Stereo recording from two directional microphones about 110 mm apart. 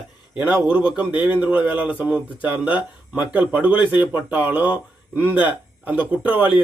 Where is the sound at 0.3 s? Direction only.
15° right (ahead or behind).